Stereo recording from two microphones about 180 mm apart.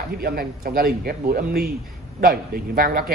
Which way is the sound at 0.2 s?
55° right (ahead or behind).